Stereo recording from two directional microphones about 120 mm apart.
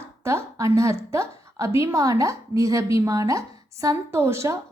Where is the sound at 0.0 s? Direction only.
25° right (ahead or behind).